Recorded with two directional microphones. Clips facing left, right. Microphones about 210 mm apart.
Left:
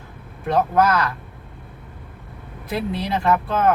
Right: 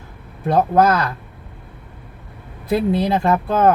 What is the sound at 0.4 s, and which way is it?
Speech, 30° right (ahead or behind).